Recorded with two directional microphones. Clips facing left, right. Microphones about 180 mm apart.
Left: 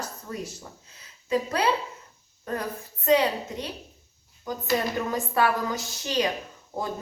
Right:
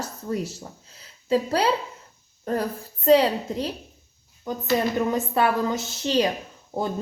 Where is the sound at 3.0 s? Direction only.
35° right (ahead or behind).